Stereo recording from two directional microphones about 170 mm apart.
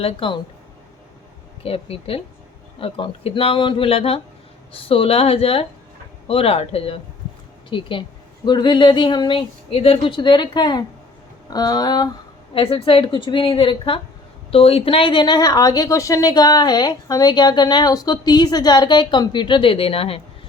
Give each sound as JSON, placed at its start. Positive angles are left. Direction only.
{"t": 0.0, "sound": "a woman's voice", "side_deg": 30}
{"t": 1.6, "sound": "a woman's voice", "side_deg": 35}